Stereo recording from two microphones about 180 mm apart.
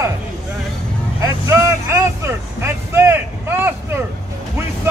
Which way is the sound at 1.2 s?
15° right (ahead or behind).